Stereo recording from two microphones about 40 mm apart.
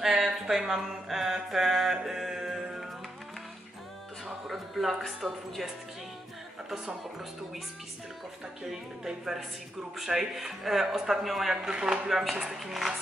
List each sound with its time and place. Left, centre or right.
0.0 s mantra: centre
4.5 s a man's voice: centre
8.6 s a man's voice: centre
11.7 s speech: centre
12.1 s speech: centre